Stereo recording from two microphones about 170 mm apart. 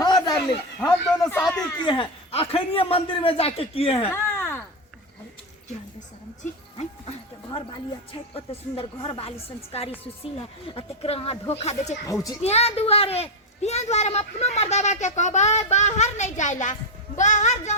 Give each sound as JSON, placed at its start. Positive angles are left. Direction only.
{"t": 0.0, "sound": "a sound", "side_deg": 25}
{"t": 0.8, "sound": "speech", "side_deg": 15}
{"t": 1.8, "sound": "a child's voice", "side_deg": 30}
{"t": 4.1, "sound": "a sound", "side_deg": 15}
{"t": 6.4, "sound": "speech", "side_deg": 35}
{"t": 8.3, "sound": "a child's voice", "side_deg": 35}
{"t": 12.1, "sound": "a child's voice", "side_deg": 0}
{"t": 12.4, "sound": "a child's voice", "side_deg": 40}